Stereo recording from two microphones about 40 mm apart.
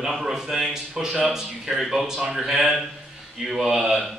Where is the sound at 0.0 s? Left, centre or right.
Centre.